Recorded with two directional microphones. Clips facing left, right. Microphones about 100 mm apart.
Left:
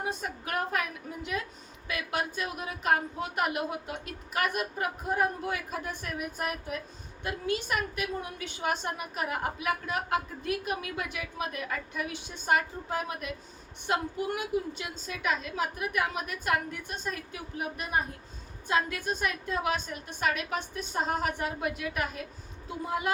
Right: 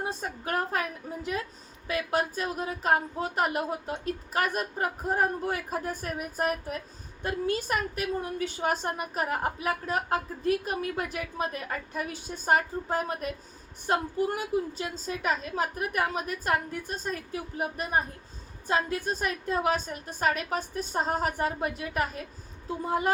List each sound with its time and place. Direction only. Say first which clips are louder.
0.0 s a woman's voice: right 1 dB; 35° right (ahead or behind)